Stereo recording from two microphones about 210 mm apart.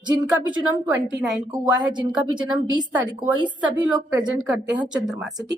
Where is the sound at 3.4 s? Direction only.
20° right (ahead or behind).